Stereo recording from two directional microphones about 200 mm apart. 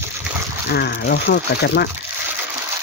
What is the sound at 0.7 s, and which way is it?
Speech, 55° left (ahead or behind).